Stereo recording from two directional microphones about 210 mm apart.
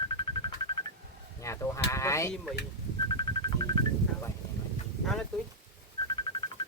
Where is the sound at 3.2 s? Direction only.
20° left (ahead or behind).